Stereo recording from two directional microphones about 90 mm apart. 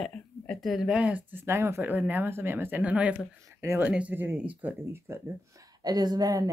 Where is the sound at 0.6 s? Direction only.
5° right (ahead or behind).